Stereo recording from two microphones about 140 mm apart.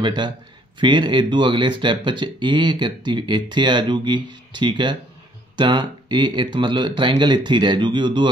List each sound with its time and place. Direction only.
0.0 s speech: 35° right (ahead or behind)